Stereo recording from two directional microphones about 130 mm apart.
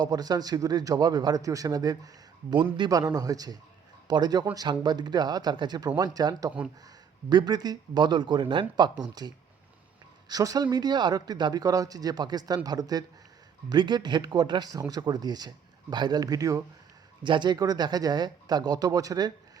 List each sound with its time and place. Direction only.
0.0 s speech: 30° right (ahead or behind)